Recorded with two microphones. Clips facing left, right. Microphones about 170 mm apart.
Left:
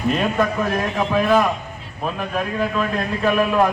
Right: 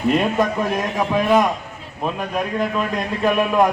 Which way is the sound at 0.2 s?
15° right (ahead or behind).